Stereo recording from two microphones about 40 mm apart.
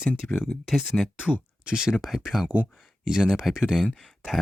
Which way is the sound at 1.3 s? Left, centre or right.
Right.